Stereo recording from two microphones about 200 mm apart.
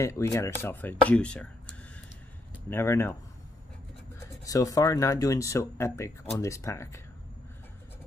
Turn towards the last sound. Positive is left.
turn(degrees=15)  # may be behind; listen again after turning